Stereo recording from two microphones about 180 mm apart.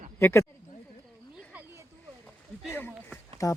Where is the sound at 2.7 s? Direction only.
10° left (ahead or behind).